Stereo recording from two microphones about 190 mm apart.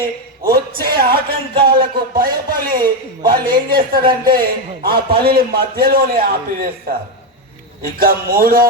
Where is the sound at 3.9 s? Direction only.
50° right (ahead or behind).